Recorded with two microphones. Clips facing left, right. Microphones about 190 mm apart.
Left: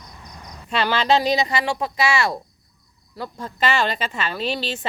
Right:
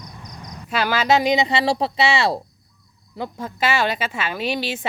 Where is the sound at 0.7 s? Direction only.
5° right (ahead or behind); by 1.6 s 20° right (ahead or behind).